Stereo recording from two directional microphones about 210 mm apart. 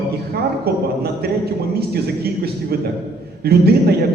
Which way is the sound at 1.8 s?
50° right (ahead or behind).